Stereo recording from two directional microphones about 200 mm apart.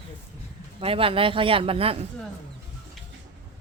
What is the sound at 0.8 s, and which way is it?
Speech, 30° right (ahead or behind).